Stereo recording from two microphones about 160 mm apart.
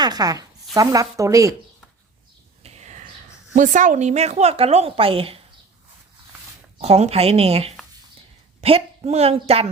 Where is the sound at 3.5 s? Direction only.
55° right (ahead or behind); by 5.4 s 35° right (ahead or behind).